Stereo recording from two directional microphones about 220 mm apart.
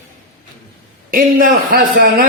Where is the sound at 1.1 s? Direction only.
40° right (ahead or behind).